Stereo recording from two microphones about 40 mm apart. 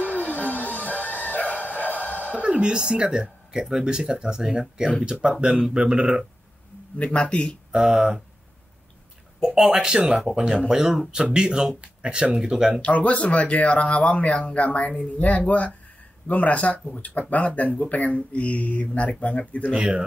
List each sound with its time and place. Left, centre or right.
0.0 s music: left
2.4 s speech: right
7.0 s speech: left
9.6 s speech: centre
12.8 s speech: left
19.7 s speech: right